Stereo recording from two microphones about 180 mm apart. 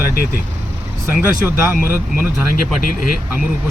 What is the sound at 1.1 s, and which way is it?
Speech, 10° right (ahead or behind).